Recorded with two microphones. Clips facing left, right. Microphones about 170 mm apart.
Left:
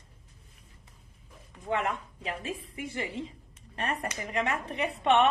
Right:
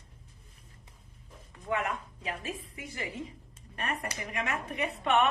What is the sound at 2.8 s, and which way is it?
A woman's voice, 25° left (ahead or behind).